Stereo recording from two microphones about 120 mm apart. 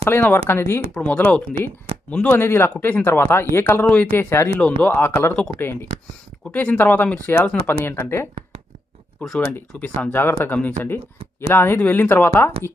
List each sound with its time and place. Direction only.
0.0 s speech: 15° left (ahead or behind)
0.9 s a man's voice: 5° left (ahead or behind)
9.2 s speech: 5° left (ahead or behind)
9.5 s speech: 15° left (ahead or behind)